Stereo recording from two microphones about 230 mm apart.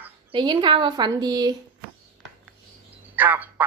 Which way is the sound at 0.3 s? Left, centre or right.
Right.